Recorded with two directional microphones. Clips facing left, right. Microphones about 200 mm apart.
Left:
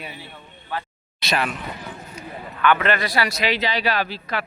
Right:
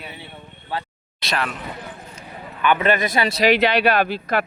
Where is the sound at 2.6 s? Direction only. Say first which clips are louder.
Right 1 dB; 15° right (ahead or behind).